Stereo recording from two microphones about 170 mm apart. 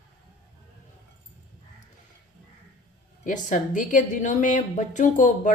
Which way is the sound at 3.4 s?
50° left (ahead or behind).